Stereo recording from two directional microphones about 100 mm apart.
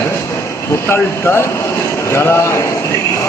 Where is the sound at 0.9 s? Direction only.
25° left (ahead or behind).